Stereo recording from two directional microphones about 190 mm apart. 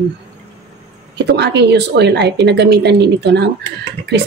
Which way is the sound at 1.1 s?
60° right (ahead or behind).